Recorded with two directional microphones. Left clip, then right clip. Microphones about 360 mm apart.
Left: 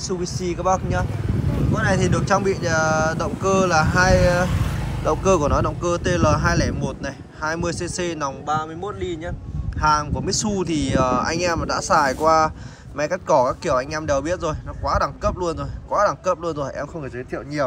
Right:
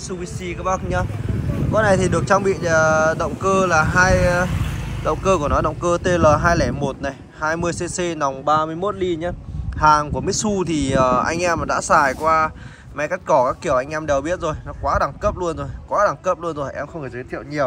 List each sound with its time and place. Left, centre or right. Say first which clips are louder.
0.1 s speech: left 3 dB; centre